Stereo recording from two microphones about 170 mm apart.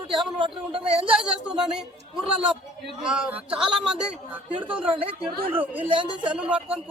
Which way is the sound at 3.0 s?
5° right (ahead or behind).